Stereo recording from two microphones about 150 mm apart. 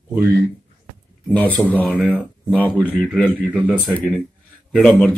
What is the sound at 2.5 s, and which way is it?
Speech, 10° left (ahead or behind).